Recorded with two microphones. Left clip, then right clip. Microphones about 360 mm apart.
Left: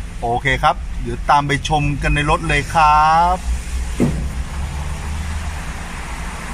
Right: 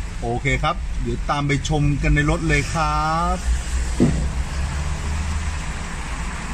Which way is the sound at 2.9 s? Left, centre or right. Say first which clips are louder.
Left 12 dB; left.